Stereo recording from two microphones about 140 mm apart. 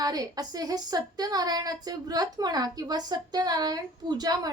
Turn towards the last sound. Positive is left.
turn(degrees=-25)  # may be behind; listen again after turning